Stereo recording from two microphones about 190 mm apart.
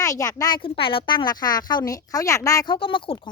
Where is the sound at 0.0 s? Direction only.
15° left (ahead or behind).